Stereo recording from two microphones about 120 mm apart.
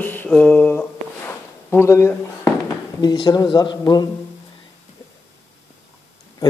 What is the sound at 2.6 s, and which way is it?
Speech, 35° left (ahead or behind).